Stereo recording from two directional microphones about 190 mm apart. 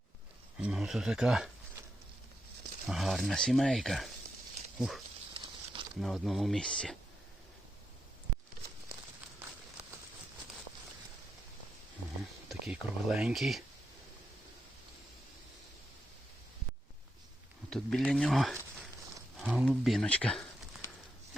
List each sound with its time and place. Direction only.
0.6 s speech: 5° right (ahead or behind)
2.8 s speech: centre (ahead or behind)
5.3 s a sound: 25° right (ahead or behind)
6.0 s speech: centre (ahead or behind)
12.5 s speech: 5° right (ahead or behind)
17.7 s speech: centre (ahead or behind)